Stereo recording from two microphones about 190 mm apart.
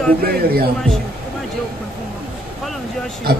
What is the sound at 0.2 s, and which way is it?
Speech, 50° right (ahead or behind).